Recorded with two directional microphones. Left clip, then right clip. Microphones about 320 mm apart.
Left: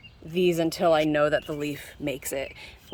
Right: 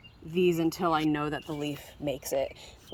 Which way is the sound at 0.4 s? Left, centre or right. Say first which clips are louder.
Left 5 dB; centre.